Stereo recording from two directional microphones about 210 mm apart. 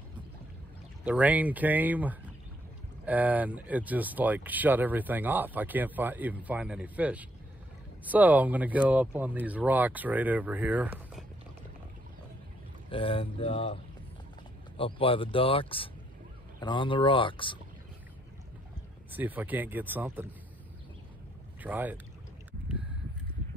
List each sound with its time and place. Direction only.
1.0 s speech: 5° right (ahead or behind)
12.9 s speech: 25° left (ahead or behind)
14.8 s speech: 25° left (ahead or behind)
19.1 s speech: 10° right (ahead or behind)
21.6 s speech: 10° right (ahead or behind)